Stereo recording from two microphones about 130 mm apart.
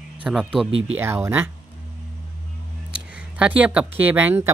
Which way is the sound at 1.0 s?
20° right (ahead or behind).